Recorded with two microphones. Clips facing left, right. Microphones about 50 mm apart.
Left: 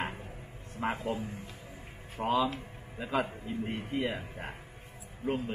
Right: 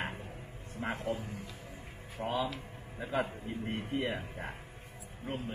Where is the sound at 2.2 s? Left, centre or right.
Left.